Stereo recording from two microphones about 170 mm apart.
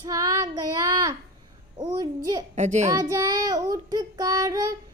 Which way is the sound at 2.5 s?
45° right (ahead or behind).